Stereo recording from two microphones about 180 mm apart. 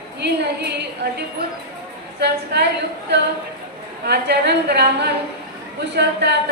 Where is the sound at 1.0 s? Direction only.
65° right (ahead or behind).